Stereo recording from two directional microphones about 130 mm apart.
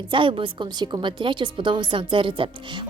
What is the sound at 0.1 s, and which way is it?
A woman's voice, 40° right (ahead or behind).